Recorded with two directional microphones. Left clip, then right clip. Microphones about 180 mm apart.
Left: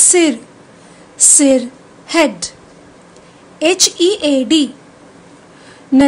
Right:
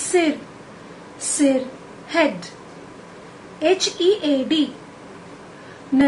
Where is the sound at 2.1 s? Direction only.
70° left (ahead or behind).